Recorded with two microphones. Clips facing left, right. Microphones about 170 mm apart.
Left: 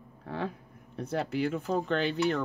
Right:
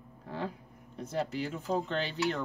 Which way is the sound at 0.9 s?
60° left (ahead or behind).